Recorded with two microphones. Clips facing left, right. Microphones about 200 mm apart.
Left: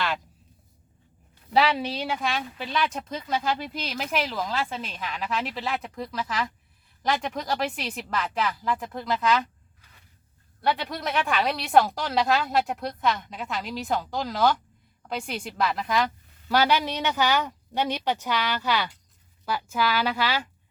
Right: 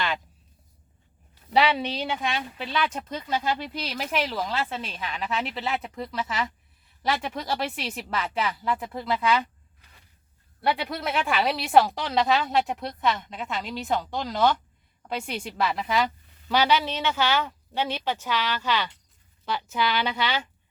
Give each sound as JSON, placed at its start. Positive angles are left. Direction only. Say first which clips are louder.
{"t": 1.5, "sound": "speech", "louder": "even", "side_deg": 0}
{"t": 10.6, "sound": "a woman's voice", "louder": "even", "side_deg": -10}